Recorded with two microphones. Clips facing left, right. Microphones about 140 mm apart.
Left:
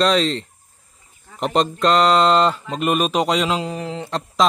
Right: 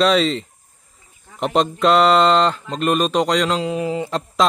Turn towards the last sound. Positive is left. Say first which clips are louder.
# right 1 dB
turn(degrees=-5)  # may be behind; listen again after turning